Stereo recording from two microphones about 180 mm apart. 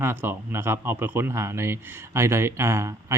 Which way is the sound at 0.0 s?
10° right (ahead or behind).